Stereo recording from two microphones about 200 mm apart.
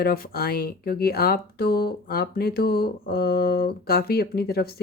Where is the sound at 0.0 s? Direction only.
50° left (ahead or behind).